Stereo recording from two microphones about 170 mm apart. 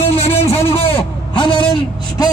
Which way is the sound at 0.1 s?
35° left (ahead or behind).